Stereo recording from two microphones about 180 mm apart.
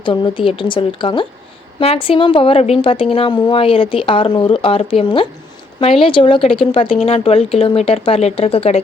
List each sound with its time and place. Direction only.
0.0 s a woman's voice: 25° left (ahead or behind)